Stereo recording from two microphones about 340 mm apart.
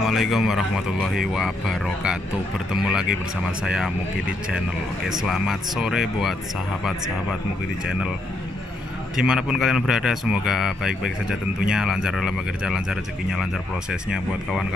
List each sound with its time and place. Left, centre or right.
0.1 s a man's voice: centre
5.2 s a man's voice: centre
9.1 s a man's voice: centre